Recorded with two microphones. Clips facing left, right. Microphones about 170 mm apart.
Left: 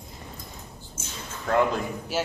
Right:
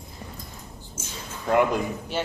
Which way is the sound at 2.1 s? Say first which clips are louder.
Left 1 dB; 5° left (ahead or behind).